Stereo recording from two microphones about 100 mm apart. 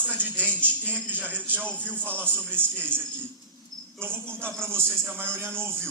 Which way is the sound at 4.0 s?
25° right (ahead or behind).